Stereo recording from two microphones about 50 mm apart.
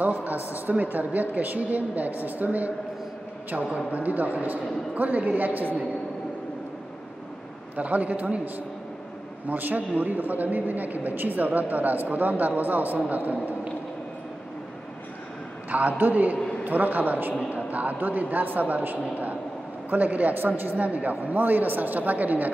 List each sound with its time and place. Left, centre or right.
0.0 s speech: right
3.7 s speech: right
7.7 s speech: right
9.5 s speech: right
16.0 s speech: right